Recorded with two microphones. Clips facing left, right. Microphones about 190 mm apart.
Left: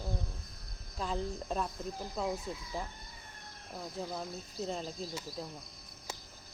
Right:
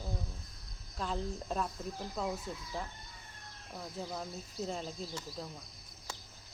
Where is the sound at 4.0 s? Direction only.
Centre (ahead or behind).